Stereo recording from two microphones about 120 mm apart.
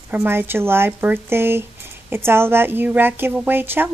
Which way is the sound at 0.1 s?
15° right (ahead or behind).